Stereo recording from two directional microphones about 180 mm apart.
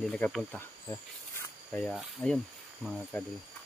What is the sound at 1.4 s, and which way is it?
Snake, 10° left (ahead or behind).